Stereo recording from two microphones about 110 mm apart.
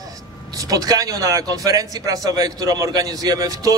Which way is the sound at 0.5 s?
35° right (ahead or behind).